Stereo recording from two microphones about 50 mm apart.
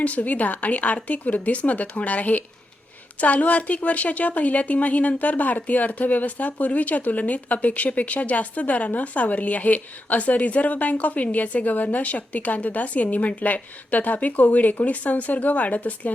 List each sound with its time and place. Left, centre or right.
0.0 s speech: left